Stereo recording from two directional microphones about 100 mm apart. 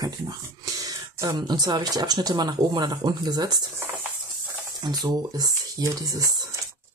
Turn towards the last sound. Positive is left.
turn(degrees=-35)  # may be behind; listen again after turning